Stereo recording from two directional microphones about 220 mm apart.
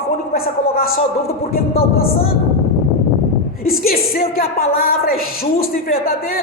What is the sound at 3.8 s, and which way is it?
A man's voice, 45° left (ahead or behind).